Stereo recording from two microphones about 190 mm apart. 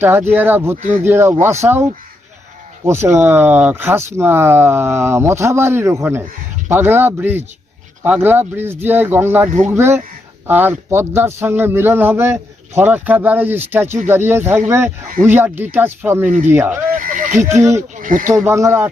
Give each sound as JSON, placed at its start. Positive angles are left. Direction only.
{"t": 0.0, "sound": "a man's voice", "side_deg": -10}
{"t": 17.0, "sound": "speech", "side_deg": -45}
{"t": 17.5, "sound": "a man's voice", "side_deg": -15}
{"t": 18.0, "sound": "speech", "side_deg": -45}
{"t": 18.3, "sound": "a man's voice", "side_deg": -15}